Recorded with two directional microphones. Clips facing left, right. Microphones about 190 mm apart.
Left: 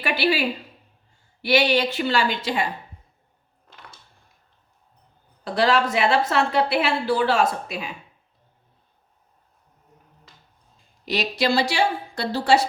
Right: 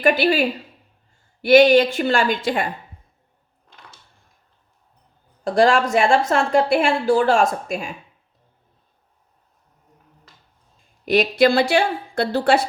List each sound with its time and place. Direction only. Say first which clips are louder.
0.0 s a woman's voice: right 5 dB; 45° right (ahead or behind)
5.5 s a woman's voice: right 4 dB; 45° right (ahead or behind)
11.0 s a woman's voice: right 8 dB; 50° right (ahead or behind)